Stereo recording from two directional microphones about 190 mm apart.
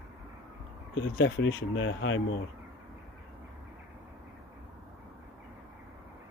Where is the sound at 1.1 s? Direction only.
75° left (ahead or behind).